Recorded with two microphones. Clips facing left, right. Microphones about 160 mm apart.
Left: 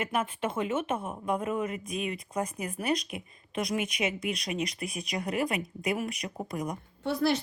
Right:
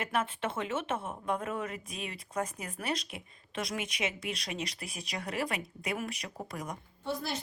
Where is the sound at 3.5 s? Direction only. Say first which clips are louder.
Left 5 dB; 15° left (ahead or behind).